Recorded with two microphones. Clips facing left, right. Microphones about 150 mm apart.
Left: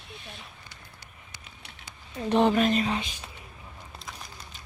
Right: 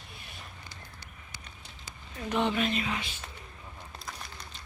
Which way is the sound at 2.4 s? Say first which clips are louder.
Left 6 dB; 45° left (ahead or behind).